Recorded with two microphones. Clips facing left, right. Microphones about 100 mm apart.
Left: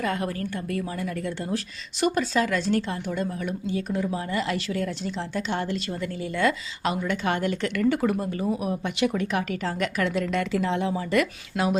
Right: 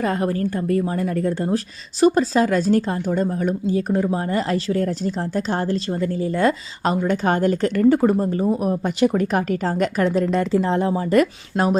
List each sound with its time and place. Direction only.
0.0 s speech: 35° right (ahead or behind)